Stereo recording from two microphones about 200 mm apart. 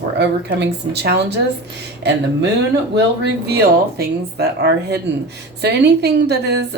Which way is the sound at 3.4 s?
50° right (ahead or behind).